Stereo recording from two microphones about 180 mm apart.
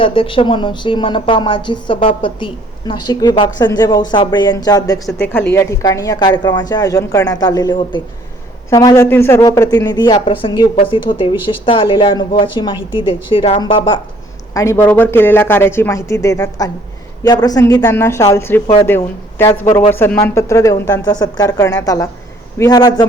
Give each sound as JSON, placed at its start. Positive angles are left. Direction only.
{"t": 0.0, "sound": "a woman's voice", "side_deg": 30}
{"t": 5.0, "sound": "a woman's voice", "side_deg": 5}
{"t": 5.5, "sound": "a woman's voice", "side_deg": 20}
{"t": 14.5, "sound": "a woman's voice", "side_deg": 15}